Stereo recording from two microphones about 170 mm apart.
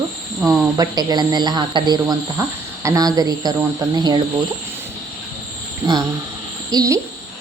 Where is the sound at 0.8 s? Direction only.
25° right (ahead or behind).